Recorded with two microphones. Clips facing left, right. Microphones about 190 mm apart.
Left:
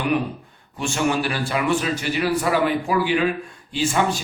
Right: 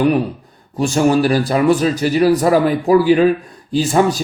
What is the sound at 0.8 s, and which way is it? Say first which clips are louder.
A man's voice: right 8 dB; 35° right (ahead or behind).